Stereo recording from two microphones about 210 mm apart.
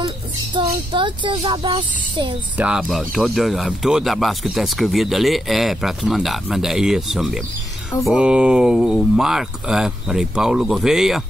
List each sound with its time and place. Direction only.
0.6 s speech: 25° right (ahead or behind)
2.5 s speech: 5° right (ahead or behind)